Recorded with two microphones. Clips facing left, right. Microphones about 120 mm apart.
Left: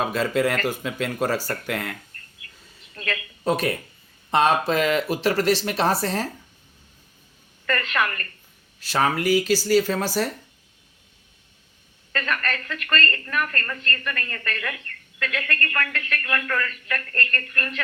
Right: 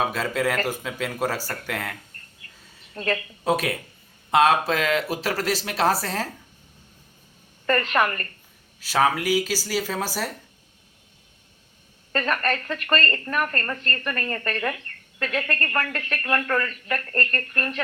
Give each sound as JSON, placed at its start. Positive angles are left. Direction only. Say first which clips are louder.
{"t": 0.0, "sound": "speech", "louder": "left 2 dB", "side_deg": -5}
{"t": 2.1, "sound": "a sound", "louder": "left 1 dB", "side_deg": -30}
{"t": 2.9, "sound": "a woman's voice", "louder": "right 5 dB", "side_deg": -30}
{"t": 3.4, "sound": "speech", "louder": "left 1 dB", "side_deg": -5}
{"t": 7.7, "sound": "a woman's voice", "louder": "right 3 dB", "side_deg": -35}
{"t": 8.8, "sound": "speech", "louder": "right 1 dB", "side_deg": -5}
{"t": 12.1, "sound": "a woman's voice", "louder": "right 3 dB", "side_deg": -35}